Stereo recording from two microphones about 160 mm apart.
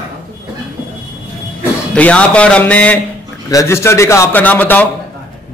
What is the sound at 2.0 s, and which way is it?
A man's voice, 5° left (ahead or behind).